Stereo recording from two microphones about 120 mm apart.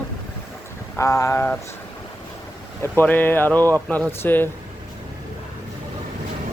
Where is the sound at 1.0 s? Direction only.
25° left (ahead or behind).